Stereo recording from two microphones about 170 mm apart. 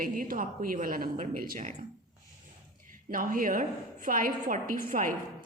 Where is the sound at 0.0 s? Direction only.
55° right (ahead or behind).